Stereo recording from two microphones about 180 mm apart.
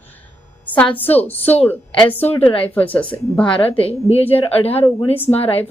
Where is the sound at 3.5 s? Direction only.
30° left (ahead or behind).